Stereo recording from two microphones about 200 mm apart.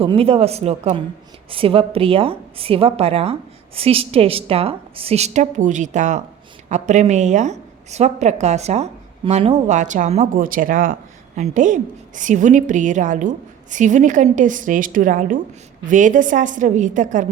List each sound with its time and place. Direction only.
0.0 s a woman's voice: 30° right (ahead or behind)